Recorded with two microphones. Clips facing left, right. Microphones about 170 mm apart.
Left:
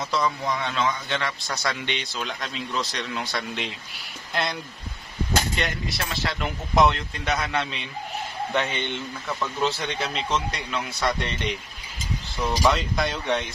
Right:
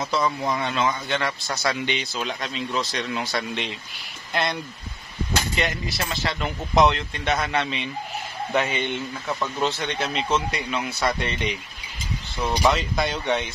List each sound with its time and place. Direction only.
0.0 s speech: centre (ahead or behind)
5.6 s a man's voice: centre (ahead or behind)
12.6 s speech: centre (ahead or behind)